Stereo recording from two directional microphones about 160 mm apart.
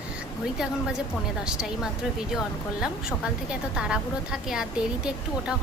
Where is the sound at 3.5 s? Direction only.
5° right (ahead or behind).